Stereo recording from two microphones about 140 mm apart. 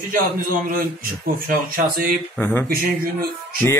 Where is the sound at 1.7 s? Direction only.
90° right.